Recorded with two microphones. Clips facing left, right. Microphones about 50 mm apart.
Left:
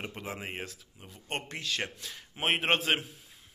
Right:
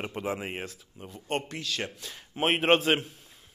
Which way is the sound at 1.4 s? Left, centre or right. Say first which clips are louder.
Right 1 dB; left.